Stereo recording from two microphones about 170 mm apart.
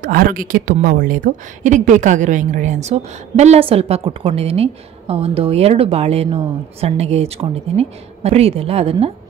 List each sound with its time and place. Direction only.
0.0 s a woman's voice: 55° right (ahead or behind); by 9.1 s 35° right (ahead or behind)